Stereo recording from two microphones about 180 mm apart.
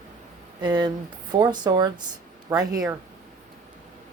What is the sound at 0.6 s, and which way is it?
Speech, 25° right (ahead or behind).